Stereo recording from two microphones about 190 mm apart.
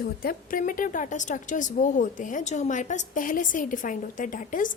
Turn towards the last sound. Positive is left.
turn(degrees=45)  # may be behind; listen again after turning